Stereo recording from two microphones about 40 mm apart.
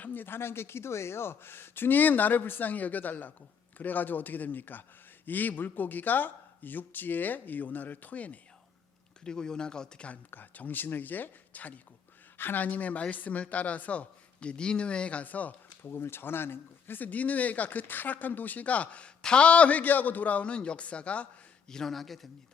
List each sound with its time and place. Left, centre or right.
0.1 s a man's voice: left
9.2 s speech: centre
10.3 s a man's voice: left
12.4 s speech: left
12.6 s a man's voice: left
15.3 s a man's voice: left
15.8 s speech: left
17.1 s a man's voice: left
21.8 s speech: centre